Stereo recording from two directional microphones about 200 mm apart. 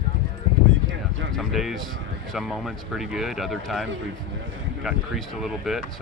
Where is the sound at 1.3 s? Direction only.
Centre (ahead or behind).